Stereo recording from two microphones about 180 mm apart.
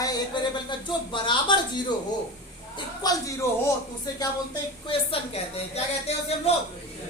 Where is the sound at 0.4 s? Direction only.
25° left (ahead or behind).